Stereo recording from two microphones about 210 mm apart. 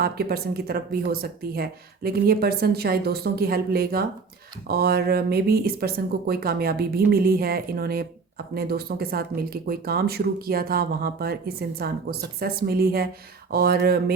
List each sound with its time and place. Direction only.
0.0 s speech: 50° right (ahead or behind)